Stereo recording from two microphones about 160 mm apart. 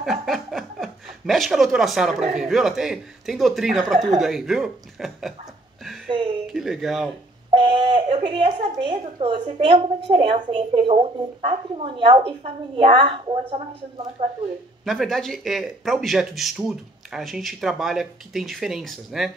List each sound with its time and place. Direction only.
0.0 s speech: centre (ahead or behind)
6.4 s speech: centre (ahead or behind)
7.5 s speech: 30° right (ahead or behind)
14.9 s speech: centre (ahead or behind)